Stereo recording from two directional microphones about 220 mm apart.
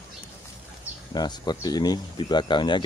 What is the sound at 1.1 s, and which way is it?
Speech, 20° left (ahead or behind).